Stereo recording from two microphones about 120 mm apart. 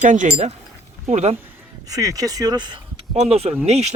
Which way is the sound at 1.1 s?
65° right (ahead or behind).